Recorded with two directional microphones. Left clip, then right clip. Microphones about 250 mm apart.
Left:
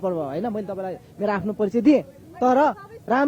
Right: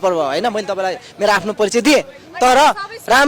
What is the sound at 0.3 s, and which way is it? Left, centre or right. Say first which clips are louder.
A man's voice: right 10 dB; centre.